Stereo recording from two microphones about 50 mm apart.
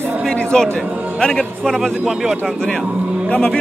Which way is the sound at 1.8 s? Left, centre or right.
Centre.